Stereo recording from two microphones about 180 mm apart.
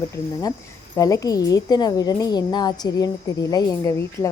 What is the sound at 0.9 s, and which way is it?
A woman's voice, 20° left (ahead or behind).